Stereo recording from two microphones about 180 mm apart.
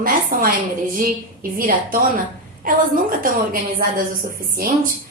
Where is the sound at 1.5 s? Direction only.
50° right (ahead or behind).